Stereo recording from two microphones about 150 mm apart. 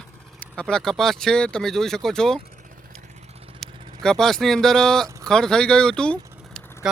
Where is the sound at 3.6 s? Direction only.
5° left (ahead or behind).